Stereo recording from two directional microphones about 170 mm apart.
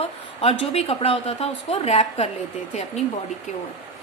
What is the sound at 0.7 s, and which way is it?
A woman's voice, 35° left (ahead or behind).